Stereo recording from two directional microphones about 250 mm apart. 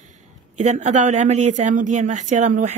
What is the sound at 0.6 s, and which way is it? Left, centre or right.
Speech, right.